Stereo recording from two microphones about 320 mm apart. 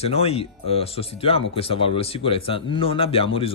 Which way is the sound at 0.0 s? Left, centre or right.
Centre.